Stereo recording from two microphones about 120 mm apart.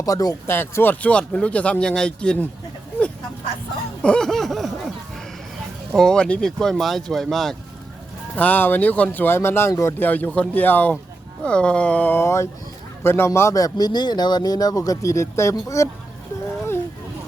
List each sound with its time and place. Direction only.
0.0 s speech: 30° left (ahead or behind)
0.4 s speech: 20° left (ahead or behind)
4.0 s speech: 5° left (ahead or behind)
5.9 s speech: 5° left (ahead or behind)
8.4 s a man's voice: 15° left (ahead or behind)